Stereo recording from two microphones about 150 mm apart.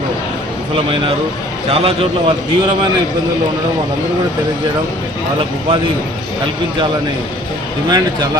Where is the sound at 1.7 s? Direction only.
40° right (ahead or behind).